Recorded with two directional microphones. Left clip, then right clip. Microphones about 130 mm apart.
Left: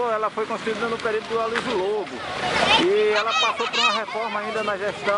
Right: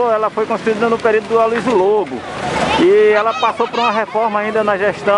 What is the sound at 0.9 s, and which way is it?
Speech, 20° right (ahead or behind).